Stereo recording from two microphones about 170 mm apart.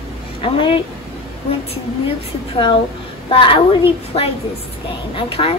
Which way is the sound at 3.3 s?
30° left (ahead or behind).